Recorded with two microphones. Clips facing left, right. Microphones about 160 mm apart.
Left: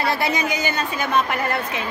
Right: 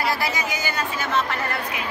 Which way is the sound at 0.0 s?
20° left (ahead or behind).